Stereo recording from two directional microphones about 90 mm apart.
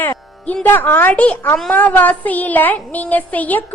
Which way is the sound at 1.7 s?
20° left (ahead or behind).